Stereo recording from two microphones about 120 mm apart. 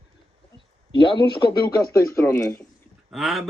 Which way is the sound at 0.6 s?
45° left (ahead or behind).